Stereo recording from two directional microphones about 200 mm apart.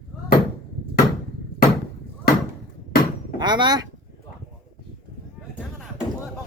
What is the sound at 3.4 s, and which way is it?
Speech, 20° right (ahead or behind).